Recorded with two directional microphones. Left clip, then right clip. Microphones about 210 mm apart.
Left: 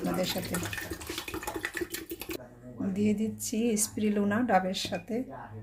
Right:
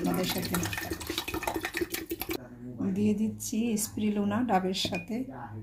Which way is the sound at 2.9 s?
15° left (ahead or behind).